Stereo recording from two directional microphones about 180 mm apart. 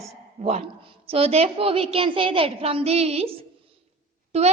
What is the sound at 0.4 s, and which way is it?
Speech, 35° right (ahead or behind).